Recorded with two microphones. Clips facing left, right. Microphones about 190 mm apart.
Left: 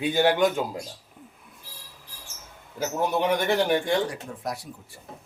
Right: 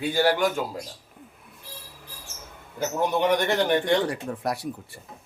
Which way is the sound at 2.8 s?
5° left (ahead or behind).